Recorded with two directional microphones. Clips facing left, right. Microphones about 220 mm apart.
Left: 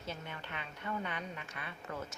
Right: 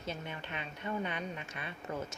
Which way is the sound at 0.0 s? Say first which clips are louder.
Right 3 dB; 20° right (ahead or behind).